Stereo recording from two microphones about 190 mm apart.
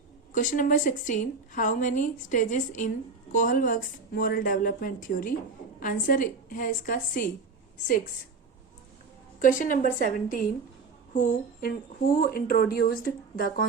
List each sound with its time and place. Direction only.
0.3 s a woman's voice: 45° left (ahead or behind)
9.4 s a woman's voice: 45° left (ahead or behind)